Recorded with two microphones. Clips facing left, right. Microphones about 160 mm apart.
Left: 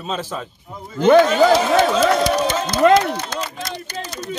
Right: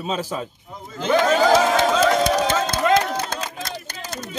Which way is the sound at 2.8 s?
55° left (ahead or behind).